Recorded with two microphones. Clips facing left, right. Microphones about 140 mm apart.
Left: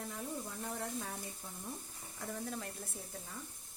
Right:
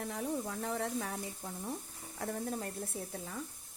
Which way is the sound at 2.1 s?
55° right (ahead or behind).